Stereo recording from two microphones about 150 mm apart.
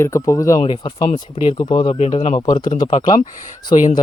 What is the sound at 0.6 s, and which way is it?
Speech, 35° left (ahead or behind).